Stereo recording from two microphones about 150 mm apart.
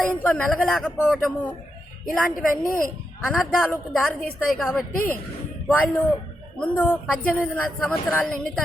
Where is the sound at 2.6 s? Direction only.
65° left (ahead or behind).